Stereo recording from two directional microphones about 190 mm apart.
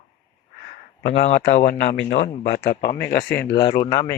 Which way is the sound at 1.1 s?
35° left (ahead or behind).